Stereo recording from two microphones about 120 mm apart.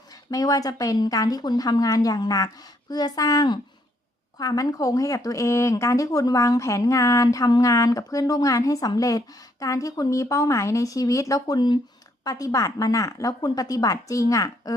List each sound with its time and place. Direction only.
0.3 s a woman's voice: 30° left (ahead or behind)